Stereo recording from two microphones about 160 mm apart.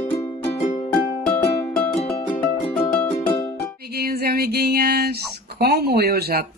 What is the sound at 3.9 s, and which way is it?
Music, 75° right (ahead or behind).